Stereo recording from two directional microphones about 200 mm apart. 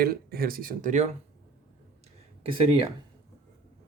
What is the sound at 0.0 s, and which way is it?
Speech, 50° right (ahead or behind).